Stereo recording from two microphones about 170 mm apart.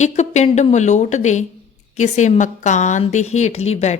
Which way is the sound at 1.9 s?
45° left (ahead or behind).